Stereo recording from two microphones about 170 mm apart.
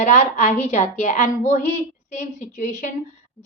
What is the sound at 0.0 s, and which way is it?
A woman's voice, 45° left (ahead or behind).